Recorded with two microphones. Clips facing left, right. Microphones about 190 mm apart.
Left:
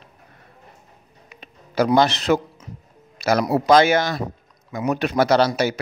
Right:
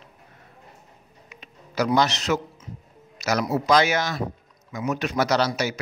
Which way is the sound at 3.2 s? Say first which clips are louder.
Left 5 dB; 55° left (ahead or behind).